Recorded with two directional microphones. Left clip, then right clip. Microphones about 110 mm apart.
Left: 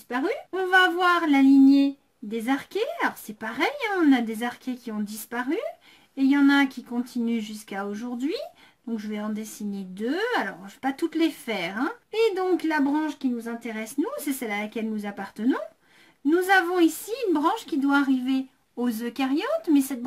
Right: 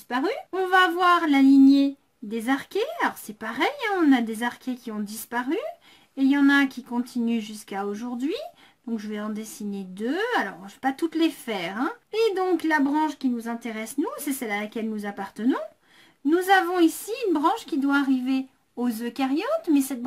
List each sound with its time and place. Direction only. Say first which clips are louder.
0.1 s speech: right 1 dB; 25° right (ahead or behind)